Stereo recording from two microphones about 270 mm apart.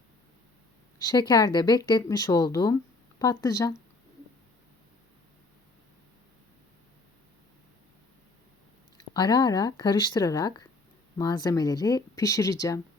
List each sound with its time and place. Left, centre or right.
1.0 s speech: centre
9.0 s speech: centre